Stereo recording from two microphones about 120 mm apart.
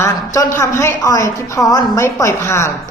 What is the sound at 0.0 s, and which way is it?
A woman's voice, 25° left (ahead or behind).